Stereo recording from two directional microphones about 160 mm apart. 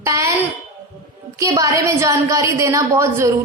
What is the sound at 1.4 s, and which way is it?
Speech, 20° right (ahead or behind).